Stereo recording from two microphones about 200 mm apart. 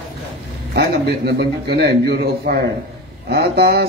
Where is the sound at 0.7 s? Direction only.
55° right (ahead or behind).